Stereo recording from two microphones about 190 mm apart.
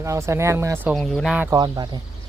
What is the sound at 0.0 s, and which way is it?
Speech, 15° right (ahead or behind).